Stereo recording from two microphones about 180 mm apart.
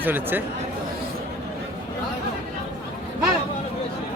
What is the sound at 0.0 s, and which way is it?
Speech, 10° right (ahead or behind).